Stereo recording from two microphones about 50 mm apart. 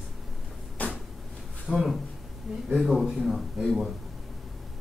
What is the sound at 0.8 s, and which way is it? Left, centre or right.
Cupboard open or close, left.